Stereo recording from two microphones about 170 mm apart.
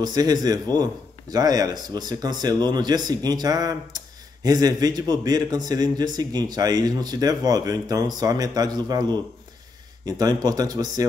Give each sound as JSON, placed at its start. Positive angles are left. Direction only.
{"t": 0.0, "sound": "speech", "side_deg": -20}